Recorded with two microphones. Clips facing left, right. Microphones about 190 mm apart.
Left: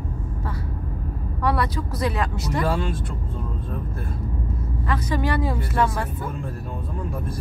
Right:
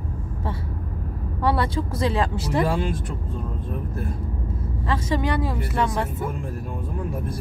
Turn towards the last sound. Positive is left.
turn(degrees=-20)  # may be behind; listen again after turning